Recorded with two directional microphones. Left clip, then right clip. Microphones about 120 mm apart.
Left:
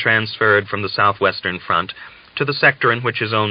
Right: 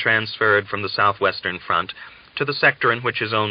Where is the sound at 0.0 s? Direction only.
40° left (ahead or behind).